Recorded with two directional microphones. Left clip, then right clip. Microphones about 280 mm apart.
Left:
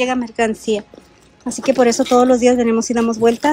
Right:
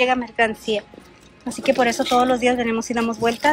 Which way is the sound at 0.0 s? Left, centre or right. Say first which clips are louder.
Left 1 dB; centre.